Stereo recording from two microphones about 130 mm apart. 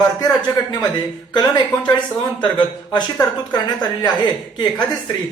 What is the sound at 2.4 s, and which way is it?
A man's voice, 35° left (ahead or behind).